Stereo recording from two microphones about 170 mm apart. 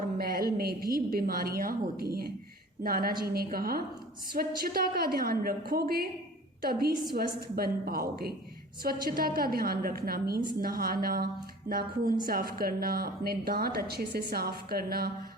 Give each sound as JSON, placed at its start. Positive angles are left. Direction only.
{"t": 0.2, "sound": "speech", "side_deg": -60}